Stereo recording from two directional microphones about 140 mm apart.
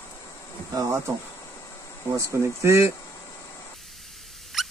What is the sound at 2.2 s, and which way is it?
Speech, 20° right (ahead or behind).